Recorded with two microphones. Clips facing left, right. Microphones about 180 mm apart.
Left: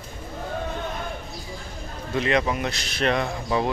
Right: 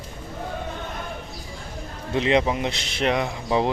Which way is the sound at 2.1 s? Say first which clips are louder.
Right 2 dB; 25° right (ahead or behind).